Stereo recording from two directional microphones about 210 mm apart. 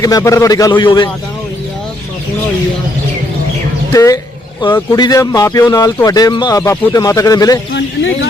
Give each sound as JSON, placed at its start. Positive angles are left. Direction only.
{"t": 0.0, "sound": "speech", "side_deg": 15}
{"t": 3.9, "sound": "speech", "side_deg": 15}
{"t": 7.7, "sound": "speech", "side_deg": 55}